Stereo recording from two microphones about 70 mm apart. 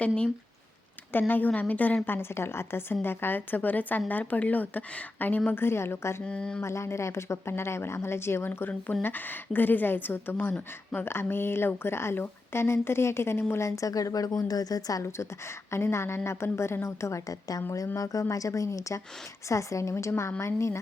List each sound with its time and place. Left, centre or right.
1.3 s a woman's voice: left
2.0 s a woman's voice: left
6.2 s a sound: centre
6.6 s speech: left
15.7 s speech: left